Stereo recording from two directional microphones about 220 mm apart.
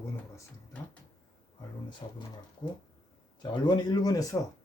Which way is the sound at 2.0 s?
25° left (ahead or behind).